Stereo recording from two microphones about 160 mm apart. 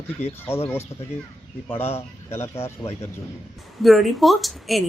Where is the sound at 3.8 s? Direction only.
Centre (ahead or behind).